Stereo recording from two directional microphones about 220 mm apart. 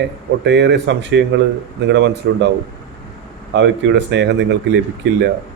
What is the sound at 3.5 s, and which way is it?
Speech, 55° right (ahead or behind).